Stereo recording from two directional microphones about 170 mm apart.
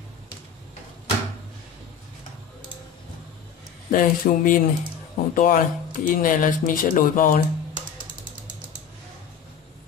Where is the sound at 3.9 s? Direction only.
50° left (ahead or behind).